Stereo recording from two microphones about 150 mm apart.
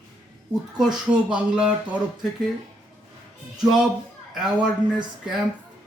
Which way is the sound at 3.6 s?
5° right (ahead or behind).